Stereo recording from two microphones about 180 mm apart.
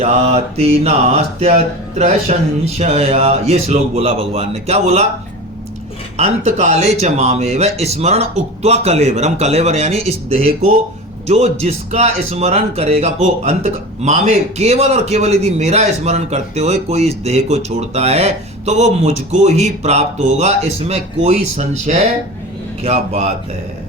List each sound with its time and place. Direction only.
0.0 s speech: 35° right (ahead or behind)
6.1 s speech: 35° right (ahead or behind)